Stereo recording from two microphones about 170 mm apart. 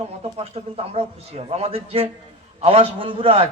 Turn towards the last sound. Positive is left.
turn(degrees=-35)  # may be behind; listen again after turning